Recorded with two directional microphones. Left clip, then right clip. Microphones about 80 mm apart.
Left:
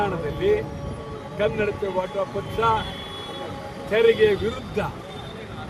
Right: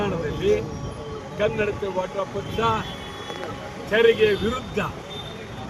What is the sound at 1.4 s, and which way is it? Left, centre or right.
Speech, left.